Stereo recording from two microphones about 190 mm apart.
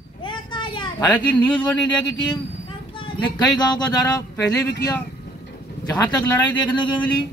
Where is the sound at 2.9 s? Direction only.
25° left (ahead or behind).